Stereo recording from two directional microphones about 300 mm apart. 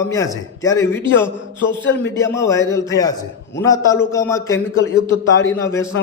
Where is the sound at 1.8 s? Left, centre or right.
Left.